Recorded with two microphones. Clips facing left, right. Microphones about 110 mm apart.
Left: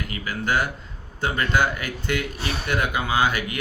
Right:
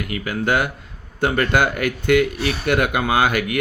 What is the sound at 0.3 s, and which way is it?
Speech, 60° right (ahead or behind).